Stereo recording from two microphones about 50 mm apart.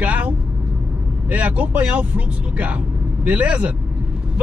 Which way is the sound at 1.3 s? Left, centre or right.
Right.